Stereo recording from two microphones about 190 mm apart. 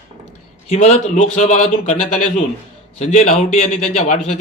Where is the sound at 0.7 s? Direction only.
35° left (ahead or behind).